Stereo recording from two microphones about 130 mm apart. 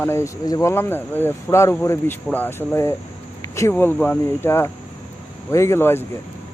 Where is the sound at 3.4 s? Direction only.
25° left (ahead or behind).